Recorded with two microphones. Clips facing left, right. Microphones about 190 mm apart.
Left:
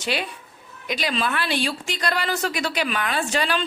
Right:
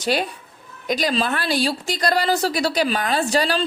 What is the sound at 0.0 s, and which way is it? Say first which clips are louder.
A woman's voice: right 5 dB; 40° right (ahead or behind).